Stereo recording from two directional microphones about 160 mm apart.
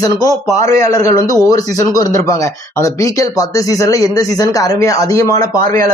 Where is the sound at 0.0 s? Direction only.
25° left (ahead or behind).